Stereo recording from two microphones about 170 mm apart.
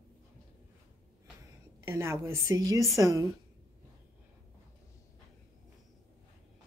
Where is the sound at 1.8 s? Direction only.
15° right (ahead or behind).